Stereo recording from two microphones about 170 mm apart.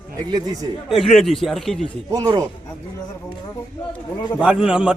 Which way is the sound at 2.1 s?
20° right (ahead or behind).